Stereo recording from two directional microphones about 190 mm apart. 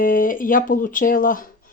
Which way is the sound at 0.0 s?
45° left (ahead or behind).